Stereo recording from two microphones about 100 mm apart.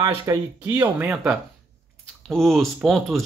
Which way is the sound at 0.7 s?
20° right (ahead or behind).